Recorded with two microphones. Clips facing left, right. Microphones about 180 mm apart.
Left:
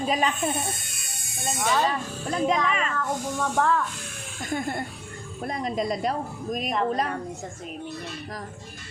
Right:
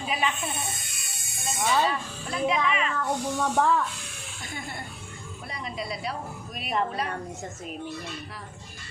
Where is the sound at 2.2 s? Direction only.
40° left (ahead or behind).